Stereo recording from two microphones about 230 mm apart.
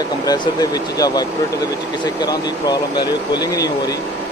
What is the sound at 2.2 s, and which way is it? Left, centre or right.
Speech, centre.